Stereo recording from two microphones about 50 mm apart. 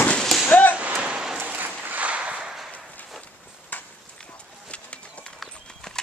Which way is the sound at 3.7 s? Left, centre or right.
Left.